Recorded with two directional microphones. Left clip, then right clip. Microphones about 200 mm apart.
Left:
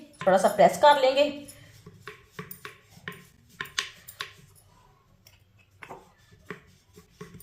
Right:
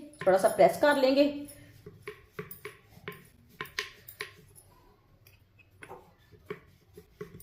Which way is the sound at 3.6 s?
5° left (ahead or behind).